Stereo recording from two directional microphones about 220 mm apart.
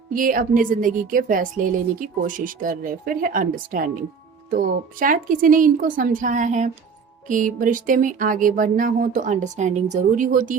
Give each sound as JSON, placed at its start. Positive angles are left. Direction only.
{"t": 0.1, "sound": "speech", "side_deg": -40}